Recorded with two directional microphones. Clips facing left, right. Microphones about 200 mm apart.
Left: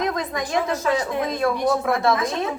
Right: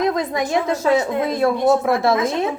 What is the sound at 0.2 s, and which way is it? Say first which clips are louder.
A woman's voice: right 4 dB; 25° right (ahead or behind).